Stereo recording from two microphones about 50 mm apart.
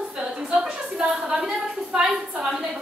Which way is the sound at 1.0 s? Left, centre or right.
Centre.